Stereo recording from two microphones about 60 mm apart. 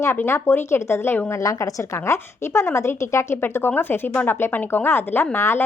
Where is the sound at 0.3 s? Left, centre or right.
Left.